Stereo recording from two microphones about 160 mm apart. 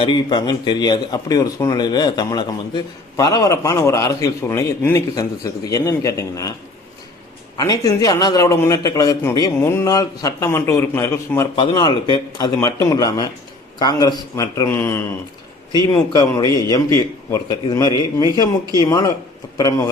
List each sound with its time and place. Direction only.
0.0 s speech: 30° left (ahead or behind)
7.5 s speech: 20° left (ahead or behind)
11.5 s speech: 30° left (ahead or behind)